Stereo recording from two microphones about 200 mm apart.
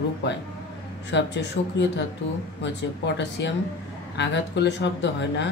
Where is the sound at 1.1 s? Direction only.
60° left (ahead or behind).